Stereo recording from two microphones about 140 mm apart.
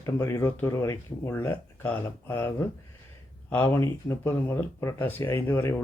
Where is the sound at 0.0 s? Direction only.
20° left (ahead or behind).